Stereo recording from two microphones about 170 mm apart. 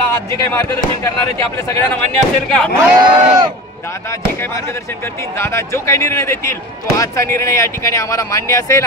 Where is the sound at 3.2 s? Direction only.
25° right (ahead or behind).